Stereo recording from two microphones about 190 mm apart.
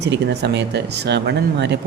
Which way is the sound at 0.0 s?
65° right (ahead or behind).